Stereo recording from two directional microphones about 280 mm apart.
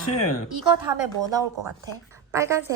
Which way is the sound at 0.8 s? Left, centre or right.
Centre.